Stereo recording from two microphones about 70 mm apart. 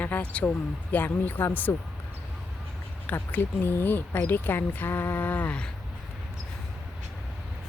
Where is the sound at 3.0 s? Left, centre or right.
Left.